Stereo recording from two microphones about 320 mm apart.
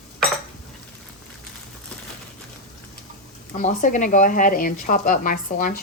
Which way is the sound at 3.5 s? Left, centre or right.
Left.